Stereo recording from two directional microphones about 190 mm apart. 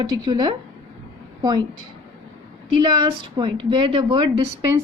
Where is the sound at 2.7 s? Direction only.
25° right (ahead or behind).